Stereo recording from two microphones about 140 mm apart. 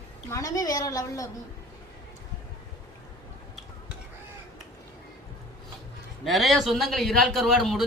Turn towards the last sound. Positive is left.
turn(degrees=0)  # may be behind; listen again after turning